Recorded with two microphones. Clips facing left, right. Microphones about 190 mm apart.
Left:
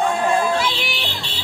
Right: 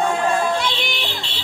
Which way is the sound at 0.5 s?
Centre (ahead or behind).